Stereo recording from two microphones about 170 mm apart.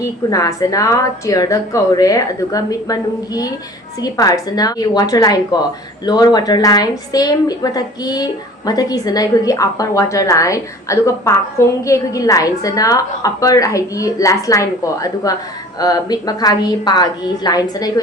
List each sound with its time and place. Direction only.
0.0 s a woman's voice: 20° left (ahead or behind)